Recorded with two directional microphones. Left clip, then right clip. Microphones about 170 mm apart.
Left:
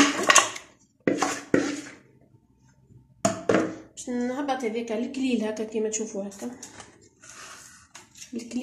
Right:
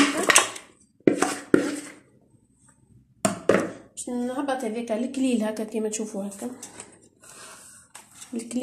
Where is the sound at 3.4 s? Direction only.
40° right (ahead or behind).